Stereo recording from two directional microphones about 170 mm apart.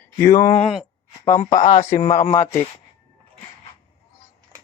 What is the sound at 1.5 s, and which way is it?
Speech, 50° left (ahead or behind).